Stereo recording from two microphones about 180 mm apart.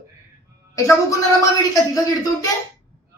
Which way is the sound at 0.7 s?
15° left (ahead or behind).